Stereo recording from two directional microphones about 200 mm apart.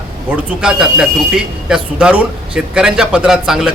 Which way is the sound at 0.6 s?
5° right (ahead or behind).